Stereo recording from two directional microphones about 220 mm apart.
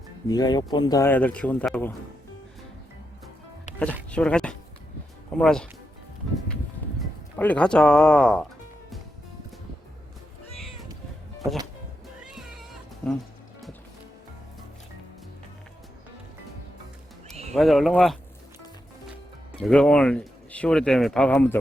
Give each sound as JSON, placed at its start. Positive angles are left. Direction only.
{"t": 0.3, "sound": "speech", "side_deg": 20}
{"t": 3.7, "sound": "music", "side_deg": 30}
{"t": 4.1, "sound": "speech", "side_deg": 5}
{"t": 7.3, "sound": "speech", "side_deg": 5}
{"t": 12.3, "sound": "cat", "side_deg": 0}
{"t": 17.5, "sound": "speech", "side_deg": 0}
{"t": 19.5, "sound": "speech", "side_deg": 5}